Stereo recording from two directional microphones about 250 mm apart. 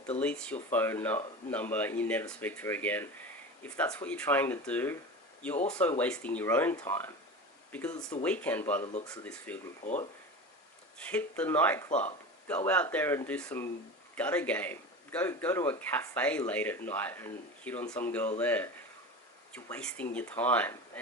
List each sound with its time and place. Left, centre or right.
0.2 s speech: centre
9.8 s speech: left
10.9 s speech: centre